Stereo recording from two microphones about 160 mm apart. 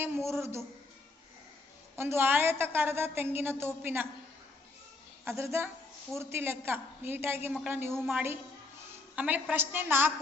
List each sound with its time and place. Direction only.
0.0 s a woman's voice: 15° right (ahead or behind)
2.0 s a woman's voice: 15° right (ahead or behind)
5.2 s a woman's voice: 15° right (ahead or behind)